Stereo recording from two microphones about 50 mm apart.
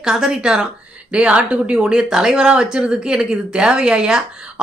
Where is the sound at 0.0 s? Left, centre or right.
Centre; by 1.8 s right.